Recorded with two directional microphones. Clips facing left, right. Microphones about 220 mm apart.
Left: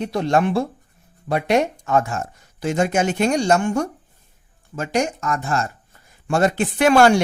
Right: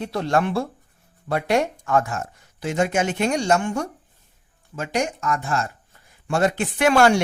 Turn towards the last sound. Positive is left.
turn(degrees=35)  # may be behind; listen again after turning